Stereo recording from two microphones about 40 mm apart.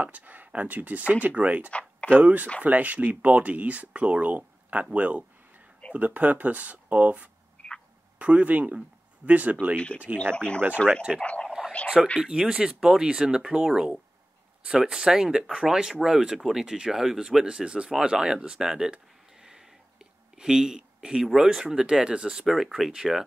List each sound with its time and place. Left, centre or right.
0.0 s speech: right
1.7 s a sound: left
2.1 s speech: right
7.6 s a sound: left
8.2 s speech: right
10.3 s speech: left
12.0 s speech: centre
17.5 s speech: right
19.4 s a sound: centre
21.3 s speech: centre
22.5 s speech: centre